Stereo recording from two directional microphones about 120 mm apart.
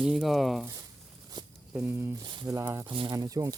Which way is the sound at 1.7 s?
15° right (ahead or behind).